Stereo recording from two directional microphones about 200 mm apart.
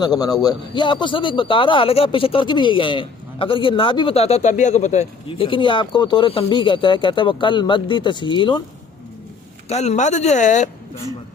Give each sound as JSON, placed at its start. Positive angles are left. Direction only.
{"t": 0.0, "sound": "speech", "side_deg": 20}
{"t": 9.6, "sound": "speech", "side_deg": 35}